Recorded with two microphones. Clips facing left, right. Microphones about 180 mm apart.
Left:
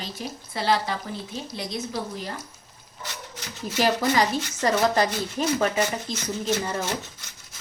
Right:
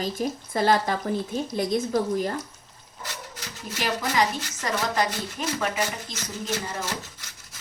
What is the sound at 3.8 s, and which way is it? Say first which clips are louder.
Speech: left 3 dB; 35° left (ahead or behind).